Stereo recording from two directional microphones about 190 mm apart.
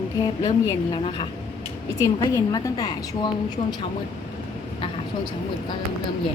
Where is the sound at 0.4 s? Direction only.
20° left (ahead or behind).